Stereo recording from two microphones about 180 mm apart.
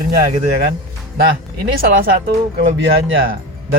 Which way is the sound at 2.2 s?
50° right (ahead or behind).